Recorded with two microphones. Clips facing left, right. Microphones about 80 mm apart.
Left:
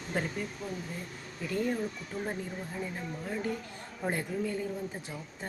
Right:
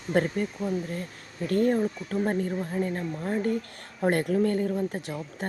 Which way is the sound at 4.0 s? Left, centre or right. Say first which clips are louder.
Right 9 dB; right.